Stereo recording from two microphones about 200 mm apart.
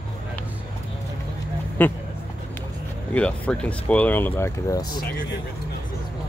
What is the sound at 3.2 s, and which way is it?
Speech, 5° left (ahead or behind).